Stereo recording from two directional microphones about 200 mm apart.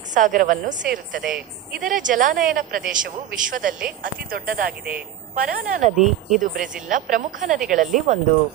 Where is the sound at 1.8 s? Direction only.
40° right (ahead or behind).